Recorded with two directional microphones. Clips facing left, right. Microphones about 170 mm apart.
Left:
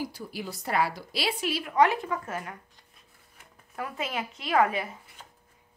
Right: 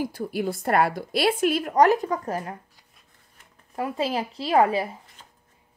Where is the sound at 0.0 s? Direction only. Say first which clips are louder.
Right 8 dB; 55° right (ahead or behind); by 2.5 s 35° right (ahead or behind).